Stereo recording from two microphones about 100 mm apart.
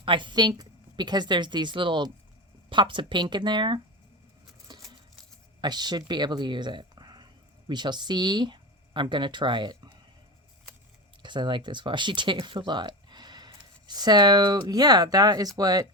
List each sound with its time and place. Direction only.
0.0 s speech: 55° right (ahead or behind)
5.5 s speech: 45° right (ahead or behind)
11.2 s speech: 50° right (ahead or behind)